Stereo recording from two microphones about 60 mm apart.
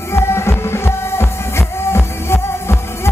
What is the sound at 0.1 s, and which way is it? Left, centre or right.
Music, left.